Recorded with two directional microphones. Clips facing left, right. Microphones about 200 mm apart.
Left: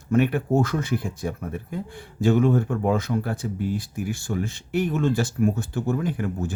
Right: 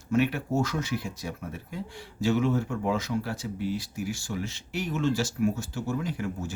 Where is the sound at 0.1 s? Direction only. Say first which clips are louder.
Left 5 dB; 55° left (ahead or behind).